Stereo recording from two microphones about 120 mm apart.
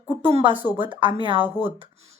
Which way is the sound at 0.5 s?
15° right (ahead or behind).